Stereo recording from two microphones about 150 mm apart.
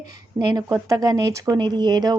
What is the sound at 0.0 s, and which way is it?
A woman's voice, 25° right (ahead or behind).